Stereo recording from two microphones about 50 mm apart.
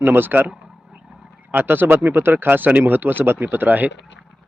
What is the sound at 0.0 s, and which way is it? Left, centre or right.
Speech, right.